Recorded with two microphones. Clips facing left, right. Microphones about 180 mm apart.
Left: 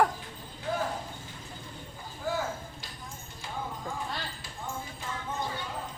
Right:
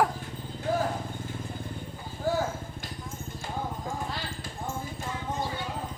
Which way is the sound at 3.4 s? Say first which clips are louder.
Right 3 dB; 50° right (ahead or behind).